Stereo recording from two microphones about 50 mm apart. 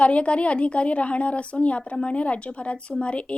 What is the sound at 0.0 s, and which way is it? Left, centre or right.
A woman's voice, left.